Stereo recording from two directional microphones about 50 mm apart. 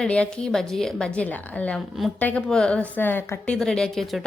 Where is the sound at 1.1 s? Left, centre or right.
Left.